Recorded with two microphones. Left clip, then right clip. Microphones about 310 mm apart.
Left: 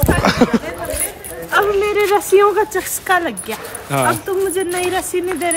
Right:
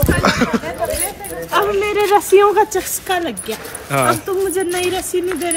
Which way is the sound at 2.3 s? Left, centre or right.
Centre.